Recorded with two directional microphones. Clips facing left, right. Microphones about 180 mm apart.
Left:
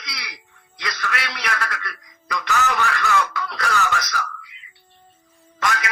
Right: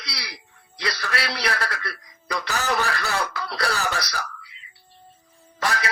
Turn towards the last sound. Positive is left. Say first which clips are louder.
# left 1 dB
turn(degrees=-35)  # may be behind; listen again after turning